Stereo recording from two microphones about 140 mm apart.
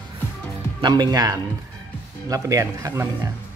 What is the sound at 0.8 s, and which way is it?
Speech, 30° right (ahead or behind).